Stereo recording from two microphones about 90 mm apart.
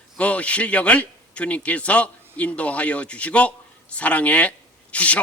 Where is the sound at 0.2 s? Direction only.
15° left (ahead or behind).